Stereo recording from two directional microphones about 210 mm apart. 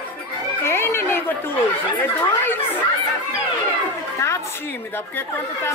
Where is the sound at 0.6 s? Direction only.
10° left (ahead or behind).